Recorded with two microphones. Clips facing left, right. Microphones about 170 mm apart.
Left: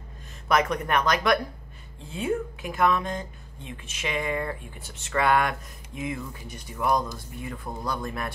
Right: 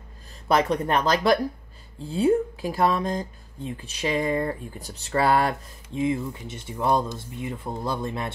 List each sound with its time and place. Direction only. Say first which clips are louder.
0.5 s speech: right 2 dB; 30° right (ahead or behind)